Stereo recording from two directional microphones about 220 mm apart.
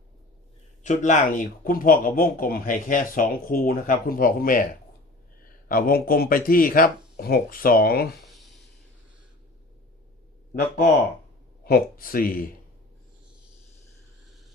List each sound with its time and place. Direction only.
0.8 s speech: 35° left (ahead or behind)
8.3 s a sound: centre (ahead or behind)
11.6 s speech: 40° left (ahead or behind)